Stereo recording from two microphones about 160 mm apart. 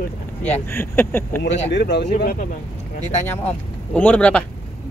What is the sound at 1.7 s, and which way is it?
Speech, 90° left.